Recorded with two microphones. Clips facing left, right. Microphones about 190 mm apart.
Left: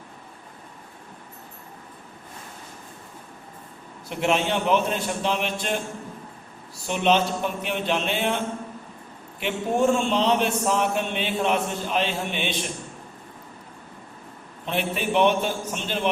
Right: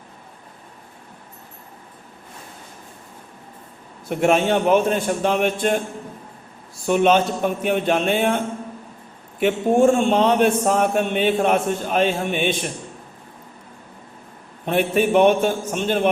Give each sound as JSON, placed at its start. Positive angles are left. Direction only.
{"t": 4.1, "sound": "a man's voice", "side_deg": -50}
{"t": 6.8, "sound": "a man's voice", "side_deg": -50}
{"t": 9.4, "sound": "a man's voice", "side_deg": -50}
{"t": 14.6, "sound": "a man's voice", "side_deg": -50}